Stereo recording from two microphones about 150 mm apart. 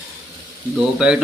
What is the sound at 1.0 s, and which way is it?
Speech, 5° right (ahead or behind).